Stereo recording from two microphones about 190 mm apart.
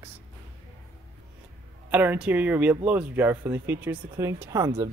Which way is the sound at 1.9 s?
10° right (ahead or behind).